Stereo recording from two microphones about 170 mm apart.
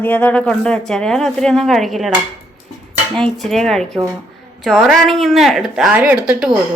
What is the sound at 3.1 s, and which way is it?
A woman's voice, 5° left (ahead or behind).